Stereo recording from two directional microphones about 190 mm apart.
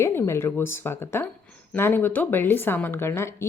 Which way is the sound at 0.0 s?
10° left (ahead or behind).